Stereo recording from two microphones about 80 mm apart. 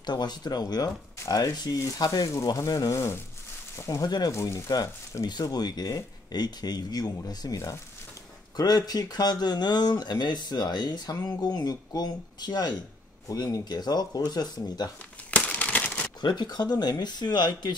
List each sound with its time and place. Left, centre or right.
0.0 s speech: left
2.9 s speech: left
5.3 s speech: left
15.3 s a sound: centre
16.2 s speech: left